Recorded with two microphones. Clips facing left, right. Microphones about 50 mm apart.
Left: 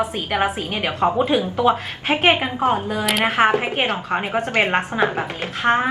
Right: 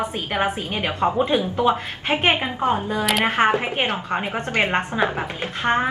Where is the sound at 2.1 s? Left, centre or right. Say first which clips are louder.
Left 3 dB; centre.